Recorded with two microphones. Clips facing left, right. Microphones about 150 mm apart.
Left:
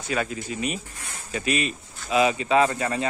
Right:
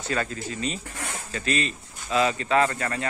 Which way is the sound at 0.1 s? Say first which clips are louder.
Left 2 dB; 10° left (ahead or behind).